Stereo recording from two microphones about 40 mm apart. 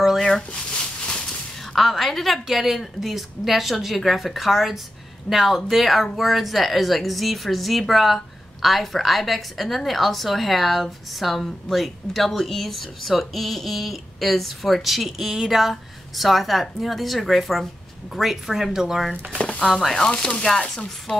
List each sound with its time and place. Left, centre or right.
1.8 s a woman's voice: centre
19.3 s speech: left
19.6 s a woman's voice: centre
20.0 s music: centre